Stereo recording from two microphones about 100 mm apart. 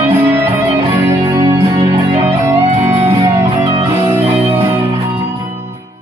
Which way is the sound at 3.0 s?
25° right (ahead or behind).